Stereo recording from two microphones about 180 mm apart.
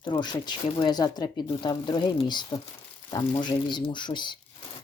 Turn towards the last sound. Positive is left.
turn(degrees=25)  # may be behind; listen again after turning